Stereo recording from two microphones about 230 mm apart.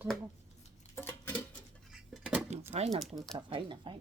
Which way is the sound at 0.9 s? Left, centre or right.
Centre.